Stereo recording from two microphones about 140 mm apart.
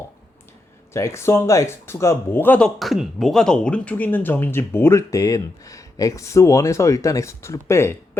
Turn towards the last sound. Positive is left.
turn(degrees=20)  # may be behind; listen again after turning